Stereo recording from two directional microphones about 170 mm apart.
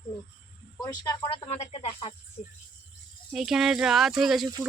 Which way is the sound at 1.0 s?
25° left (ahead or behind).